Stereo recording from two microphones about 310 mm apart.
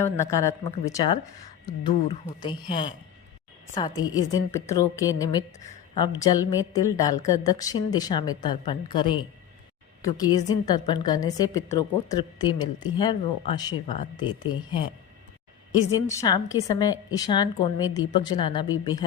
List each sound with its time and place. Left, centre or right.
0.0 s a woman's voice: centre
16.0 s a woman's voice: centre